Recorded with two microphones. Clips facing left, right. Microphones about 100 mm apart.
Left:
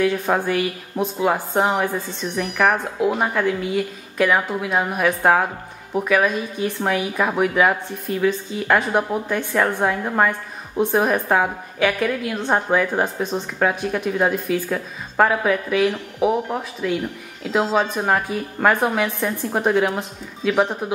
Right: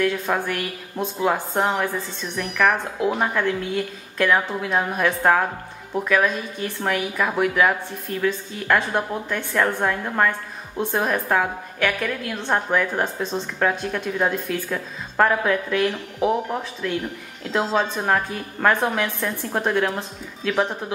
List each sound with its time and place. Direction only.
0.0 s a woman's voice: 15° left (ahead or behind)
2.4 s a woman's voice: 5° left (ahead or behind)